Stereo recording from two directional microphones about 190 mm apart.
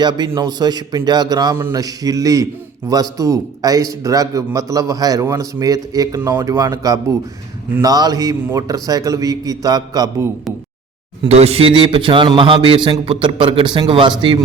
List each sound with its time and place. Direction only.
0.0 s a man's voice: 20° right (ahead or behind)
11.3 s a man's voice: 35° right (ahead or behind)